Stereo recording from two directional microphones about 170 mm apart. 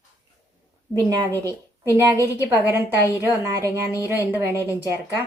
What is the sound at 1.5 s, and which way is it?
A woman's voice, 20° right (ahead or behind).